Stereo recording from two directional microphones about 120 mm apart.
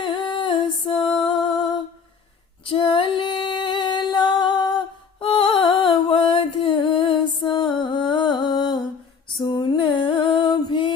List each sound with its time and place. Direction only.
0.2 s music: 40° left (ahead or behind)
2.6 s singing: 45° left (ahead or behind)
5.2 s music: 50° left (ahead or behind)